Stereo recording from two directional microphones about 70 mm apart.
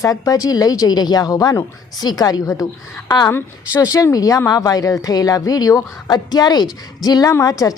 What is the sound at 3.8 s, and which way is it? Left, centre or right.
A woman's voice, left.